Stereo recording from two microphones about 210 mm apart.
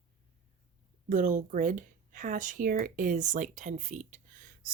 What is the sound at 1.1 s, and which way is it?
Speech, 35° right (ahead or behind).